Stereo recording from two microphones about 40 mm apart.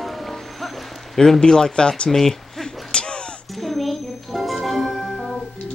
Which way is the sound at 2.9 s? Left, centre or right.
Left.